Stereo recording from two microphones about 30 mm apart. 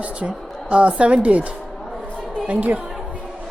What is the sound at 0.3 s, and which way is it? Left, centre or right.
Speech, right.